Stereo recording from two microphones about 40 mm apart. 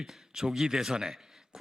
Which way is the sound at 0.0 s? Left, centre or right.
Centre.